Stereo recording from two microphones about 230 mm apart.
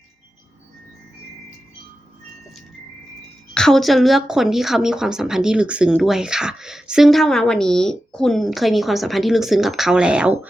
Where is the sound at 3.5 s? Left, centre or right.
Centre.